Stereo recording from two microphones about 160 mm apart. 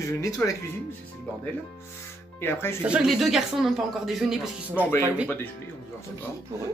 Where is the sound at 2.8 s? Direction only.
5° right (ahead or behind).